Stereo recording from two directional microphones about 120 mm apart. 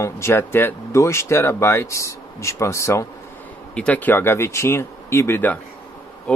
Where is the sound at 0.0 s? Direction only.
20° left (ahead or behind).